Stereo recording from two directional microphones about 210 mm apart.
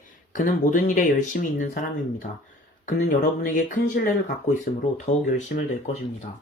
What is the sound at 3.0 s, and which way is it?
Speech, 35° left (ahead or behind).